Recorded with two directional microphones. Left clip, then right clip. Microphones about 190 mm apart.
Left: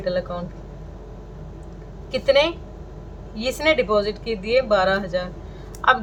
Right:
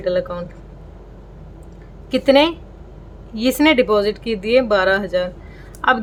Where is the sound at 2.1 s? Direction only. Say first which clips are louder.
Right 4 dB; 50° right (ahead or behind).